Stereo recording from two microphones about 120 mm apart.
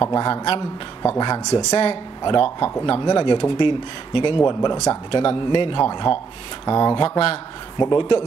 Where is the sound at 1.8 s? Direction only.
50° left (ahead or behind).